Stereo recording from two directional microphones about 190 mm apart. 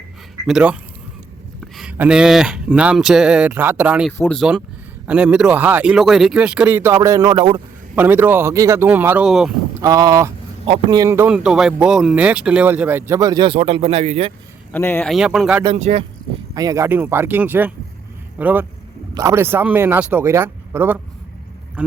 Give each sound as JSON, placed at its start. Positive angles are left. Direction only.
{"t": 0.4, "sound": "speech", "side_deg": -5}
{"t": 4.2, "sound": "a man's voice", "side_deg": 5}
{"t": 7.9, "sound": "a man's voice", "side_deg": -10}
{"t": 9.8, "sound": "a man's voice", "side_deg": -20}
{"t": 14.7, "sound": "speech", "side_deg": 10}
{"t": 15.1, "sound": "speech", "side_deg": 0}
{"t": 15.6, "sound": "speech", "side_deg": -30}
{"t": 16.6, "sound": "a man's voice", "side_deg": -15}